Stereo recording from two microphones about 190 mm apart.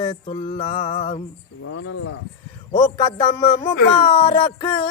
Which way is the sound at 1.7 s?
90° left.